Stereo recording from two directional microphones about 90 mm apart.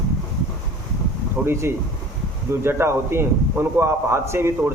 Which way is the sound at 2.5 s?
25° right (ahead or behind).